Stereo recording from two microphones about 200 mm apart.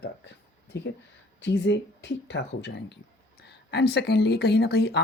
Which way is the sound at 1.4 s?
60° left (ahead or behind).